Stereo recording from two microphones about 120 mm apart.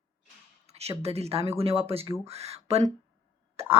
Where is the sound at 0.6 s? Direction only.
60° right (ahead or behind).